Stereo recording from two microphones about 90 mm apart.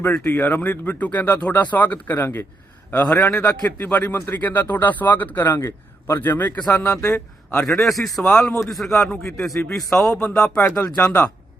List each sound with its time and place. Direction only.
0.0 s speech: 20° left (ahead or behind)
2.9 s a man's voice: 15° left (ahead or behind)
7.6 s a man's voice: 5° left (ahead or behind)
10.8 s speech: 40° left (ahead or behind)